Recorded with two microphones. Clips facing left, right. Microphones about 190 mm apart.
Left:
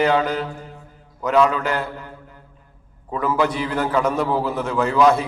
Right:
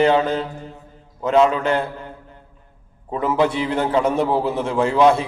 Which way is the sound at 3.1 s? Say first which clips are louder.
Right 2 dB; 25° right (ahead or behind).